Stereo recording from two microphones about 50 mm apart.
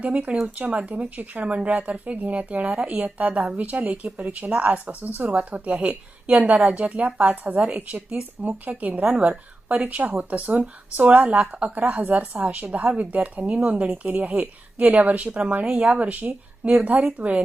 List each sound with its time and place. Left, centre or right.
0.0 s a woman's voice: right